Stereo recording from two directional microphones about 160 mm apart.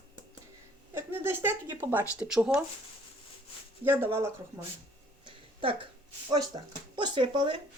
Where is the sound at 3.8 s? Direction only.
15° right (ahead or behind).